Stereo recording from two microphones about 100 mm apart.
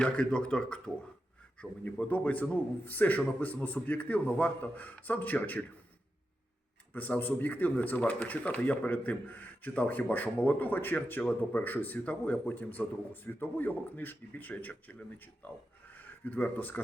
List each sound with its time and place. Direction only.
0.0 s speech: 10° left (ahead or behind)
1.8 s speech: 15° left (ahead or behind)
6.9 s speech: 15° left (ahead or behind)